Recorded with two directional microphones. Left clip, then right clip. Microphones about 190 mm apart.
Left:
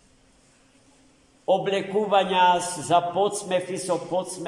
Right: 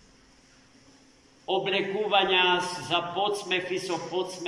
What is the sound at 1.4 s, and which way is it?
A man's voice, 45° left (ahead or behind).